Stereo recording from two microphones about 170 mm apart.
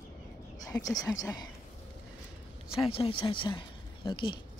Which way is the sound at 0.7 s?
20° left (ahead or behind).